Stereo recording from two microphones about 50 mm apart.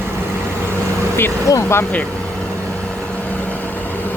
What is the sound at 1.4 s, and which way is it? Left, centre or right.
Speech, left.